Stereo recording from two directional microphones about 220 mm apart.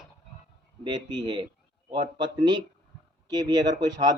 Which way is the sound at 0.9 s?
20° right (ahead or behind).